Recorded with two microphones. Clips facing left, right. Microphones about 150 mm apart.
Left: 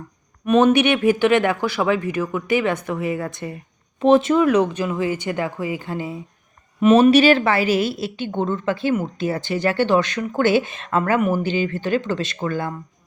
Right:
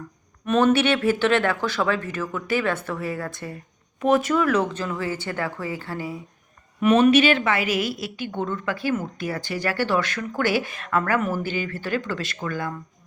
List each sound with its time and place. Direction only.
0.4 s speech: 15° left (ahead or behind)